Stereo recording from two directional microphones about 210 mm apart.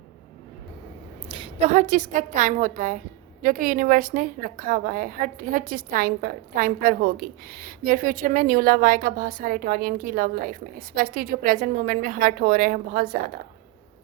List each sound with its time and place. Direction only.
1.3 s a woman's voice: 30° right (ahead or behind); by 13.3 s 45° right (ahead or behind)